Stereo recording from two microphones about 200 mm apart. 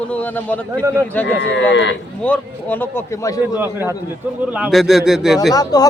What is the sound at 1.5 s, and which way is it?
Speech, 60° left (ahead or behind).